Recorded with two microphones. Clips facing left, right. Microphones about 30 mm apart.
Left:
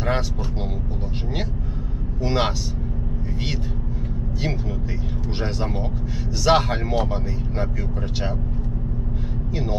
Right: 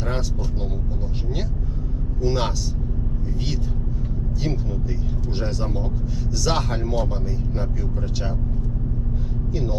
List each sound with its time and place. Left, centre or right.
2.2 s speech: left
5.4 s speech: left